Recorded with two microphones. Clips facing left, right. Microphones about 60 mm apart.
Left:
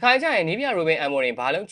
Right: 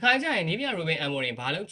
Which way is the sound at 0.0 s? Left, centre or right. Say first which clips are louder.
Left 5 dB; left.